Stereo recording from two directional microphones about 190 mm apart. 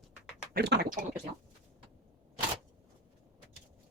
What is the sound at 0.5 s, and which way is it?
Speech, 60° right (ahead or behind).